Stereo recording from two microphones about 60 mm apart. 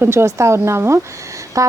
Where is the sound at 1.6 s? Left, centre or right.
Right.